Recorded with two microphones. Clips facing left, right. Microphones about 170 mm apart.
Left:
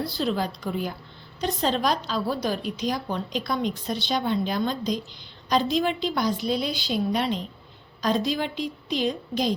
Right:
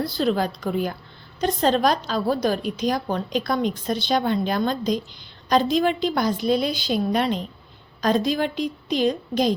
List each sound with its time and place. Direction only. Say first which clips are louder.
0.0 s a woman's voice: right 4 dB; 50° right (ahead or behind)